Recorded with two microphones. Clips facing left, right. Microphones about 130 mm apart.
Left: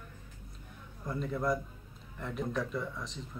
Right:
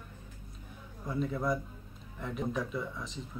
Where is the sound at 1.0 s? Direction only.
Centre (ahead or behind).